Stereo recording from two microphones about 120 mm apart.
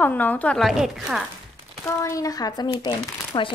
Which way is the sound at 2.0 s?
30° left (ahead or behind).